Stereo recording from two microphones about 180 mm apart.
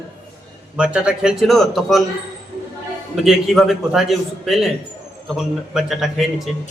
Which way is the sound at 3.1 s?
Centre (ahead or behind).